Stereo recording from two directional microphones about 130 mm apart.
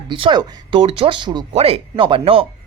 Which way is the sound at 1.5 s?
50° right (ahead or behind).